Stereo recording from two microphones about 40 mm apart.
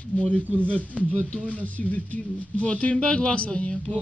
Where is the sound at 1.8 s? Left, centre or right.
Left.